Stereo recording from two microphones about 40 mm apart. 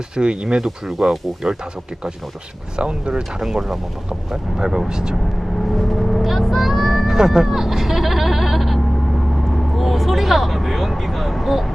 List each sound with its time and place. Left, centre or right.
0.4 s speech: centre
2.7 s speech: right
3.4 s speech: centre
5.7 s vehicle: centre
7.1 s bleat: centre
9.7 s vehicle: centre